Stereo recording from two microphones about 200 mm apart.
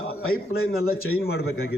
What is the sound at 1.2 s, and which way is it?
Speech, 55° left (ahead or behind).